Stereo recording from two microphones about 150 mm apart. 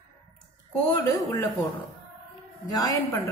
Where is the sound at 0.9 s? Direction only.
25° left (ahead or behind).